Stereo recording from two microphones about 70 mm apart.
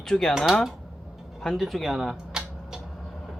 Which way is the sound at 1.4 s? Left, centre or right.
Centre.